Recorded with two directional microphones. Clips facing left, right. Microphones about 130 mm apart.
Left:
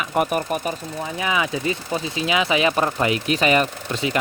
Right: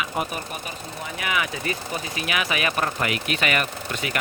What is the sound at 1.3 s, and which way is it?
Speech, 25° left (ahead or behind).